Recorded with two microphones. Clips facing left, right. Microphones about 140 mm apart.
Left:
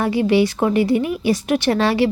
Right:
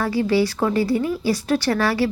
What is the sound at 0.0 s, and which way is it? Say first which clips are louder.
A woman's voice: left 3 dB; 20° left (ahead or behind).